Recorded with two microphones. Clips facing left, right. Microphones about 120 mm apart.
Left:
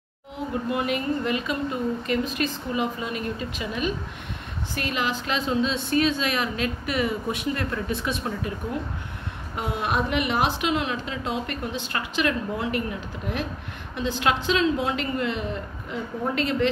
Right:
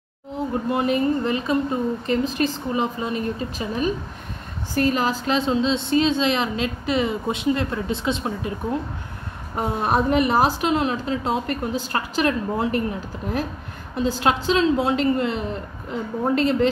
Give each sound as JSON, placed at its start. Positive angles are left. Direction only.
{"t": 0.7, "sound": "a woman's voice", "side_deg": -30}
{"t": 9.6, "sound": "a woman's voice", "side_deg": -35}
{"t": 13.9, "sound": "a woman's voice", "side_deg": -35}